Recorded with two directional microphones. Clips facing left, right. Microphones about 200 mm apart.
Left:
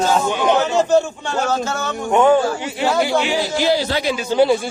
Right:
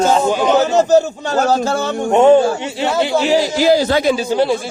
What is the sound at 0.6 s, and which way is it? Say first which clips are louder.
Speech: right 5 dB; 40° right (ahead or behind).